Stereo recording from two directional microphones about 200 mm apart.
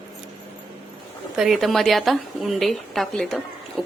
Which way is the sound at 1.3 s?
Centre (ahead or behind).